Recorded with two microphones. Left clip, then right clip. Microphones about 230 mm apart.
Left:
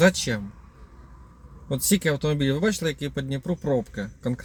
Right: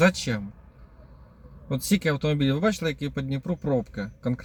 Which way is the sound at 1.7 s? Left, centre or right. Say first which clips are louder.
Left 2 dB; centre.